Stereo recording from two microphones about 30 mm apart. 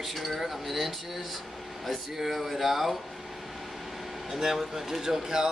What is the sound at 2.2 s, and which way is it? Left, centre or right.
Speech, centre.